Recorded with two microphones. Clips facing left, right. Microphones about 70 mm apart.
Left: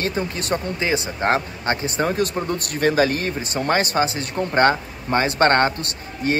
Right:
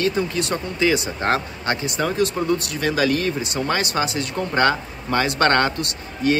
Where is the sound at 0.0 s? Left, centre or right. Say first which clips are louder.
Right 3 dB; left.